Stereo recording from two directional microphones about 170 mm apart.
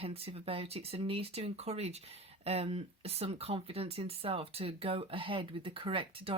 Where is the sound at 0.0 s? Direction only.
35° right (ahead or behind).